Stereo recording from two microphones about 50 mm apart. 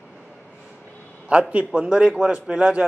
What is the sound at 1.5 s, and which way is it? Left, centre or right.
A man's voice, right.